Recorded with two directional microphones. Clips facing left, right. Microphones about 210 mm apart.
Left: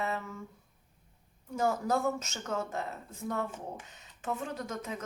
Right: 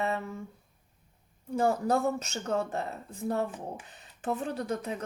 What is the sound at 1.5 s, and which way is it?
Speech, 30° right (ahead or behind).